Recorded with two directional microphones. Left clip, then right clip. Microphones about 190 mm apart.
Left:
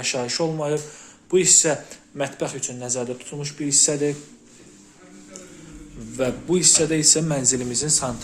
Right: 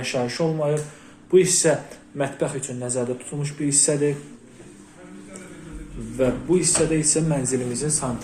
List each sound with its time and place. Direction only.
0.0 s speech: 20° left (ahead or behind)
6.1 s a man's voice: 35° left (ahead or behind)